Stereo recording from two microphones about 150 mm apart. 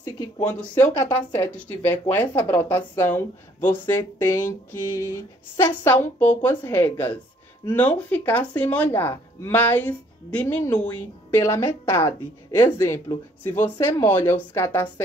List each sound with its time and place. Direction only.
0.6 s speech: 15° left (ahead or behind)